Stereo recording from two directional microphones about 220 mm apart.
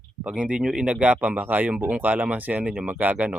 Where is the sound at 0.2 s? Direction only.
5° right (ahead or behind).